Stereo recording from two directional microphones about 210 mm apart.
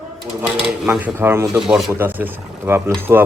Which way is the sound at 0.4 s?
5° right (ahead or behind).